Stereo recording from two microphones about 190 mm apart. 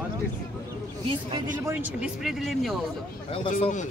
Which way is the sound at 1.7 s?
10° right (ahead or behind).